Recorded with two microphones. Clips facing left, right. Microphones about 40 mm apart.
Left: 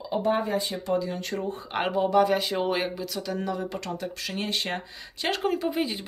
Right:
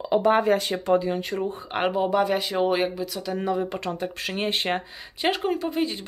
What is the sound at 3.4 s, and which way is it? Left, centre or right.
Speech, right.